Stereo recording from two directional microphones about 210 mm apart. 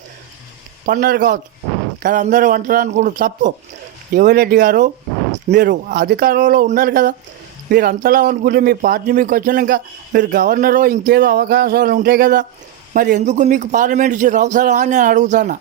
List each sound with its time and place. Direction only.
0.9 s a man's voice: 45° right (ahead or behind)